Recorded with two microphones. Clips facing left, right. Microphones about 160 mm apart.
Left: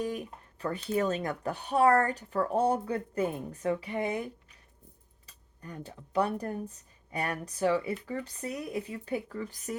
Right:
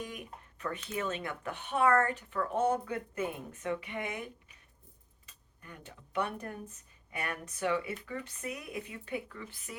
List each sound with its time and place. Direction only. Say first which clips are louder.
0.0 s speech: left 8 dB; 35° left (ahead or behind)